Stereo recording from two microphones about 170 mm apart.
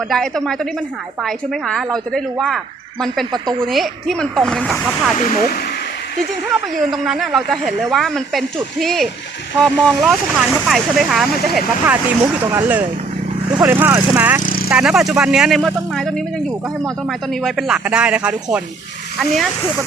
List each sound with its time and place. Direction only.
0.1 s speech: 5° left (ahead or behind)
3.7 s speech: centre (ahead or behind)
5.1 s speech: 45° left (ahead or behind)
6.9 s speech: centre (ahead or behind)
12.2 s speech: 15° right (ahead or behind)
14.4 s vehicle: 55° left (ahead or behind)
14.7 s speech: 5° right (ahead or behind)